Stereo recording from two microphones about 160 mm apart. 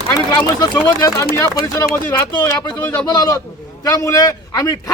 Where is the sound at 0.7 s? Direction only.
20° left (ahead or behind).